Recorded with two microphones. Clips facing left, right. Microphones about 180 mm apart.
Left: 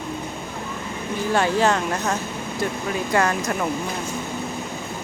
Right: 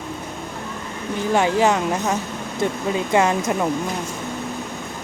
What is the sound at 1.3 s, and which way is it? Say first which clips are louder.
Speech: right 2 dB; 15° right (ahead or behind).